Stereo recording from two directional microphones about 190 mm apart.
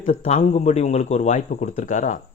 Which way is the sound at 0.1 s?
40° left (ahead or behind).